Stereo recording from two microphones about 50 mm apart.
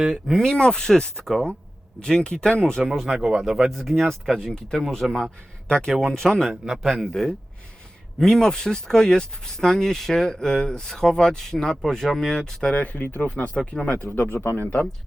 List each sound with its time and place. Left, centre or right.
0.0 s speech: centre
0.5 s speech: centre
2.8 s speech: centre
3.7 s speech: centre
6.5 s speech: centre
8.2 s speech: centre
12.7 s speech: left
14.1 s speech: left